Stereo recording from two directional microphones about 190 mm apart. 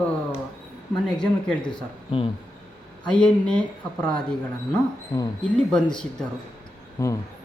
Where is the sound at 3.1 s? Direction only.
5° left (ahead or behind).